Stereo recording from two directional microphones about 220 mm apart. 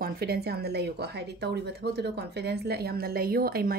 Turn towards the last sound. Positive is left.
turn(degrees=-45)  # may be behind; listen again after turning